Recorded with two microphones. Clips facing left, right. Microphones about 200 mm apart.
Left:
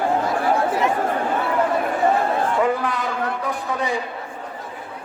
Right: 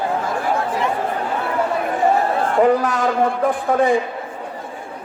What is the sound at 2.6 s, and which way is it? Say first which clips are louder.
A man's voice: right 5 dB; 40° right (ahead or behind).